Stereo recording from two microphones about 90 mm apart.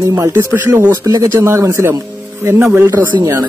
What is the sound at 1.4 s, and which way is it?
Speech, 35° right (ahead or behind).